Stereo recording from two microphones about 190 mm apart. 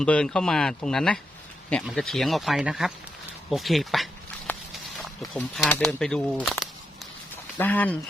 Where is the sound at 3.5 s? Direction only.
Centre (ahead or behind).